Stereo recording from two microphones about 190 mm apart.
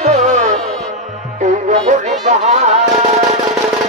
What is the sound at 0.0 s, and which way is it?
Music, 35° right (ahead or behind).